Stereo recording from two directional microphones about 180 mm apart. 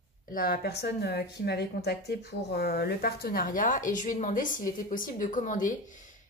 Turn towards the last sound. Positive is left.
turn(degrees=45)  # may be behind; listen again after turning